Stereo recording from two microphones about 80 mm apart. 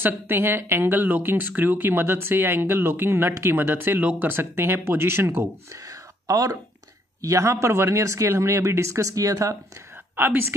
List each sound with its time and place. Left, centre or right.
0.0 s speech: right
4.0 s speech: centre
4.3 s speech: right
5.9 s a sound: right
7.2 s speech: right
10.1 s a woman's voice: right